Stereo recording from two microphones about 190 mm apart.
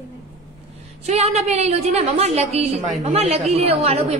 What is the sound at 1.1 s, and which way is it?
A woman's voice, 35° right (ahead or behind).